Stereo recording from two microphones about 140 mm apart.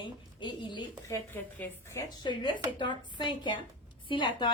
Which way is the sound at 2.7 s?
35° left (ahead or behind).